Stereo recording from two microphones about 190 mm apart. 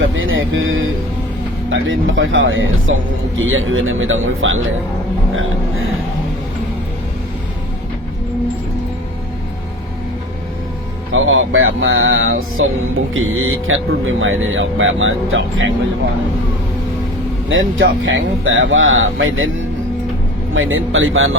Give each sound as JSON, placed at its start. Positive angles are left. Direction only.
{"t": 0.2, "sound": "speech", "side_deg": -90}
{"t": 11.1, "sound": "speech", "side_deg": -90}
{"t": 17.5, "sound": "speech", "side_deg": -90}